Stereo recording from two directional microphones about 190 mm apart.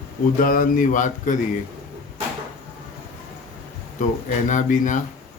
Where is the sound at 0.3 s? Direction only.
50° left (ahead or behind).